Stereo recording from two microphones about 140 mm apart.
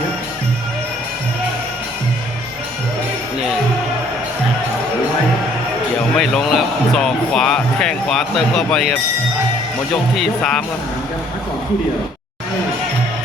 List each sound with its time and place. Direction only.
6.1 s speech: centre (ahead or behind)
9.9 s speech: 5° left (ahead or behind)